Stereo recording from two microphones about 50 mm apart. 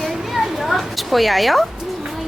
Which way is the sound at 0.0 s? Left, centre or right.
Centre.